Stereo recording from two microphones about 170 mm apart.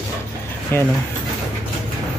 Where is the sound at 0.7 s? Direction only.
15° left (ahead or behind).